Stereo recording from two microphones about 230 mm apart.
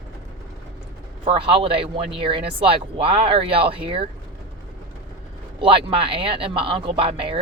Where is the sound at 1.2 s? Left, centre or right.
Right.